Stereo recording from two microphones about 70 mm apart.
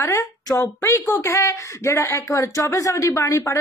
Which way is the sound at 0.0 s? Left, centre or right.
Left.